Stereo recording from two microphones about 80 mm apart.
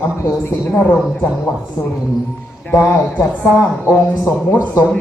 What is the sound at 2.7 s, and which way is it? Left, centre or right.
A man's voice, left.